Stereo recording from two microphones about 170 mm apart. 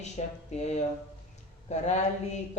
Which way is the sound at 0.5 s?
40° left (ahead or behind).